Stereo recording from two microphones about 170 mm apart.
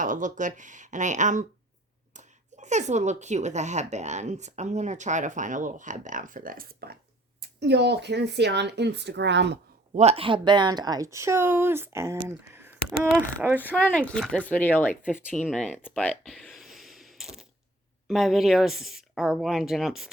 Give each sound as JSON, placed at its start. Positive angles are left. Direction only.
{"t": 0.0, "sound": "speech", "side_deg": -50}
{"t": 7.6, "sound": "speech", "side_deg": -85}
{"t": 9.9, "sound": "speech", "side_deg": -40}
{"t": 12.5, "sound": "a sound", "side_deg": -15}
{"t": 13.1, "sound": "speech", "side_deg": -10}
{"t": 13.6, "sound": "speech", "side_deg": 10}
{"t": 15.0, "sound": "speech", "side_deg": -5}
{"t": 15.4, "sound": "a sound", "side_deg": 5}
{"t": 18.1, "sound": "speech", "side_deg": 0}